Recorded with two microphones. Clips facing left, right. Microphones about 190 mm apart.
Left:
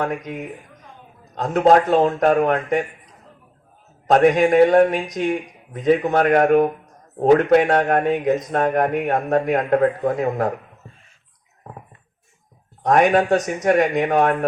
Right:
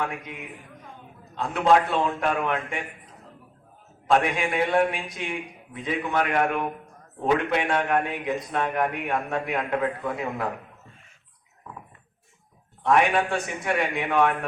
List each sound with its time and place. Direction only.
0.0 s a man's voice: 40° left (ahead or behind)
4.0 s a man's voice: 40° left (ahead or behind)
12.8 s a man's voice: 40° left (ahead or behind)